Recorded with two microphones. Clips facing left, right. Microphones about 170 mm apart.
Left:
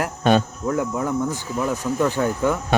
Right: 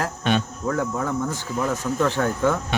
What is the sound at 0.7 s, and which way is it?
Speech, 10° left (ahead or behind).